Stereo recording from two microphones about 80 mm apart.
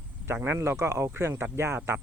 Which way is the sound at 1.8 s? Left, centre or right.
Right.